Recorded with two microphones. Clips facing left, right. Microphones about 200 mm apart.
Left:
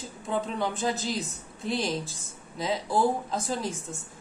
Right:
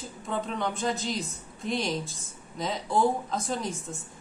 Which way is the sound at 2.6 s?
5° left (ahead or behind).